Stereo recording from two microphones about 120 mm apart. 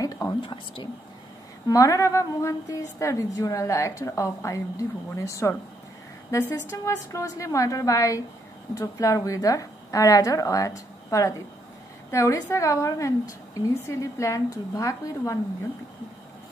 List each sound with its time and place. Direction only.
0.0 s a sound: 25° left (ahead or behind)
0.4 s whispering: 45° left (ahead or behind)
1.7 s a woman's voice: 30° left (ahead or behind)